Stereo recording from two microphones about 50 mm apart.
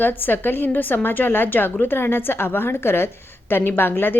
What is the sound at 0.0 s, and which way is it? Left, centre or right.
A woman's voice, left.